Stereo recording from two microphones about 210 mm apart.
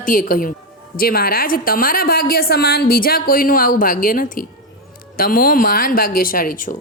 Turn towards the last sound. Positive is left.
turn(degrees=40)  # may be behind; listen again after turning